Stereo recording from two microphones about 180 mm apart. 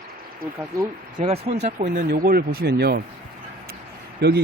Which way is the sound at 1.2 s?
35° right (ahead or behind).